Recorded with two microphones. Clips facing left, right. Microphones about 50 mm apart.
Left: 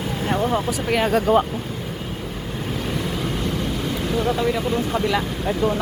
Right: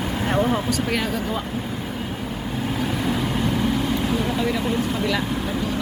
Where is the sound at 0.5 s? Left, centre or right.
Centre.